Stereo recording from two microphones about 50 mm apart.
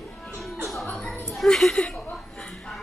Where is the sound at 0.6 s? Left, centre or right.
Centre.